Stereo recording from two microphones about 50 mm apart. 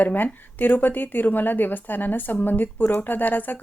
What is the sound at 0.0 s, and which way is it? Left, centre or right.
Speech, left.